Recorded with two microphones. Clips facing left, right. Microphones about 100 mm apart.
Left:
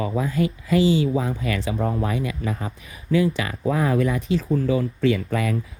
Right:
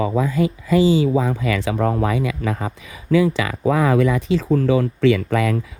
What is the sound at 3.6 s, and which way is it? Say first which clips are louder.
Speech: right 4 dB; 90° right.